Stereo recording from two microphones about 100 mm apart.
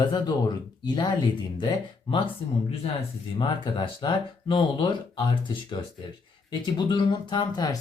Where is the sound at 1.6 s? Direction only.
60° left (ahead or behind).